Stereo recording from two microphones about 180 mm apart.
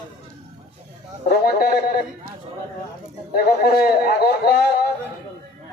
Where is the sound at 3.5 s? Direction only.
60° left (ahead or behind).